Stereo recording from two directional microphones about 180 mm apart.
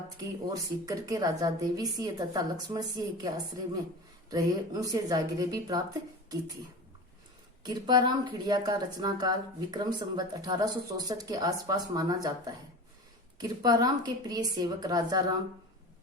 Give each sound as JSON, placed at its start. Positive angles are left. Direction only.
{"t": 0.2, "sound": "a woman's voice", "side_deg": -20}
{"t": 7.6, "sound": "a woman's voice", "side_deg": -20}